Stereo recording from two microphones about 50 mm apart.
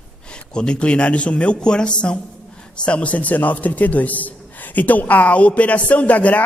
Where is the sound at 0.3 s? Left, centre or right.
Centre.